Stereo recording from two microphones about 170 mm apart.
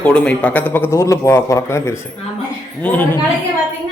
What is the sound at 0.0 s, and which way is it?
A man's voice, 5° left (ahead or behind).